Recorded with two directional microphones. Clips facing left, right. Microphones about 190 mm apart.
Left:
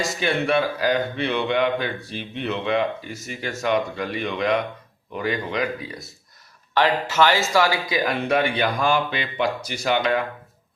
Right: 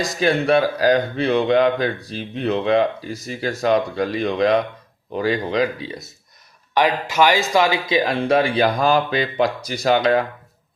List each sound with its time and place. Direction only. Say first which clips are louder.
0.2 s speech: right 5 dB; 35° right (ahead or behind)
6.7 s speech: right 2 dB; 15° right (ahead or behind); by 10.2 s 35° right (ahead or behind)